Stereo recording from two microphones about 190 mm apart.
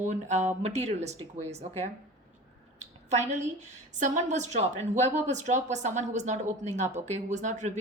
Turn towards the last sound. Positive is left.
turn(degrees=-40)  # may be behind; listen again after turning